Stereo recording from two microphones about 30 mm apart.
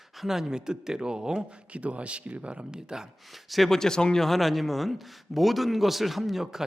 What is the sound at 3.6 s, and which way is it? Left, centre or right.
Speech, centre.